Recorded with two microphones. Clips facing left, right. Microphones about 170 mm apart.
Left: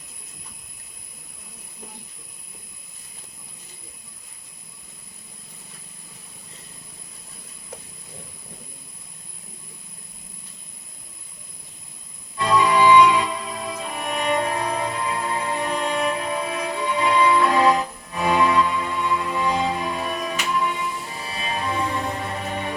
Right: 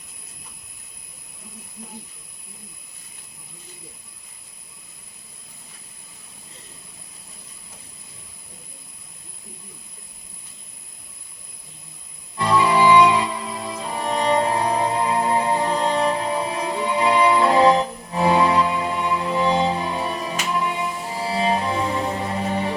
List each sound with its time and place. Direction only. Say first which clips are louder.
12.4 s music: even; 30° right (ahead or behind)